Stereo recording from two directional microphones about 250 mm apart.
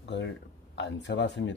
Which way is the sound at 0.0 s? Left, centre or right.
Left.